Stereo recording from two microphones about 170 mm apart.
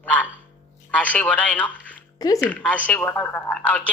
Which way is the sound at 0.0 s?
10° left (ahead or behind).